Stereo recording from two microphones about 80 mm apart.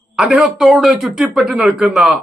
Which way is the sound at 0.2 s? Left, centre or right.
Centre.